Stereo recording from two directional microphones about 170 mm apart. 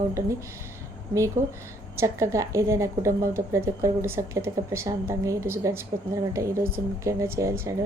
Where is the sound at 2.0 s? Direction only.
15° right (ahead or behind).